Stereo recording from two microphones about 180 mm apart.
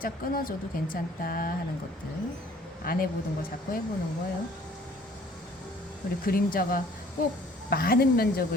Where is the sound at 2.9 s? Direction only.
50° left (ahead or behind).